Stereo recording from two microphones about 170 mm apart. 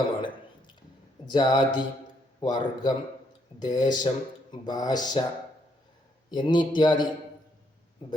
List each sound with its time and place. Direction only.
1.2 s speech: 25° left (ahead or behind)
6.3 s speech: 25° left (ahead or behind)